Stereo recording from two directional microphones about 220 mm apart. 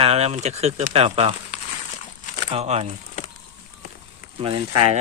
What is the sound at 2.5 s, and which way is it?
Speech, 30° right (ahead or behind).